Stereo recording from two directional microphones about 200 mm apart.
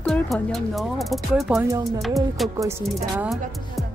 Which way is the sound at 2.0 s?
Centre (ahead or behind).